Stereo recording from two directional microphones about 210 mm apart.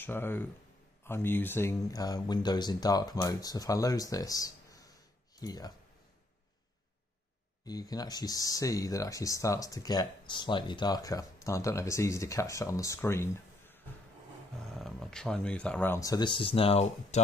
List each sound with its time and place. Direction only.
0.0 s speech: 10° left (ahead or behind)
7.6 s speech: 20° left (ahead or behind)
14.8 s speech: centre (ahead or behind); by 17.2 s 30° left (ahead or behind)